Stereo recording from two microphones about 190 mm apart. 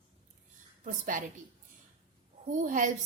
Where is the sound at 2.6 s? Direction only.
45° right (ahead or behind).